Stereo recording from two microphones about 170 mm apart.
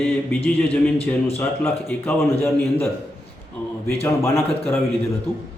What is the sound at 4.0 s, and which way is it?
Speech, 15° left (ahead or behind).